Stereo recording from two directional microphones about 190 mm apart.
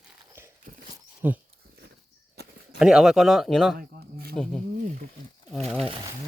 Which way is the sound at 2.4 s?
60° right (ahead or behind).